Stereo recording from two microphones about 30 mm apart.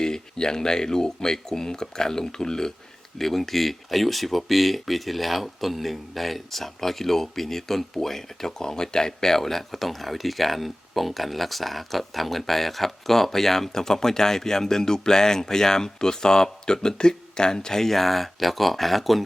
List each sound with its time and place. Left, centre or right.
0.0 s speech: left; by 19.2 s centre